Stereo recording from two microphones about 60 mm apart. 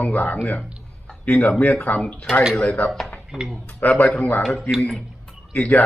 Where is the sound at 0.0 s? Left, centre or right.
Left.